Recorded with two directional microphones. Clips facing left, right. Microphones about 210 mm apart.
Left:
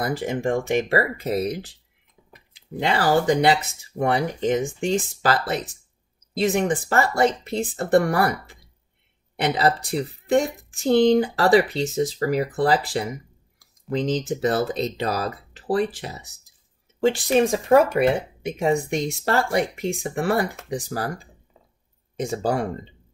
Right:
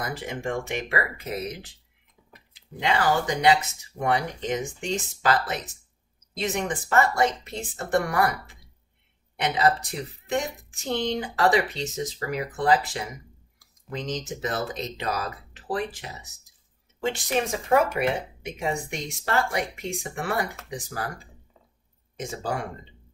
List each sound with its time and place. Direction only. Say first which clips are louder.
0.0 s speech: left 7 dB; 35° left (ahead or behind)
2.8 s speech: left 4 dB; 35° left (ahead or behind)
9.4 s speech: left 2 dB; 35° left (ahead or behind)
22.2 s speech: left 7 dB; 35° left (ahead or behind)